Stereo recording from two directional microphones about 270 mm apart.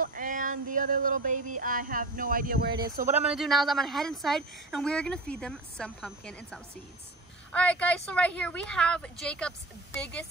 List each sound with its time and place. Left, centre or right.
0.0 s music: right
2.8 s speech: right
3.3 s speech: centre